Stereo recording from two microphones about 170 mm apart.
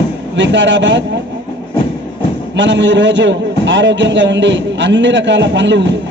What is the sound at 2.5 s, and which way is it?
A man's voice, 90° right.